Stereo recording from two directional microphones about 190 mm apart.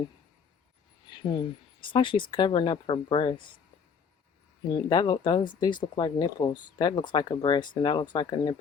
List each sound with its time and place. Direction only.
1.1 s speech: 25° left (ahead or behind)
4.7 s speech: 25° left (ahead or behind)